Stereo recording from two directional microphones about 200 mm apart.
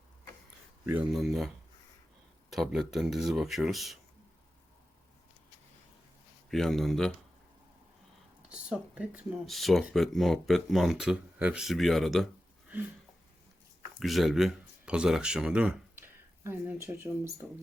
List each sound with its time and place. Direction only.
0.9 s speech: 5° right (ahead or behind)
6.5 s speech: centre (ahead or behind)
8.4 s speech: 5° right (ahead or behind)
14.0 s speech: centre (ahead or behind)